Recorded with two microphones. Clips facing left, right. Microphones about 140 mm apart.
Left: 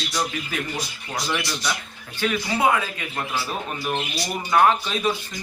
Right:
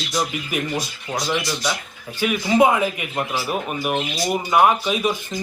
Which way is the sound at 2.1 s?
15° right (ahead or behind).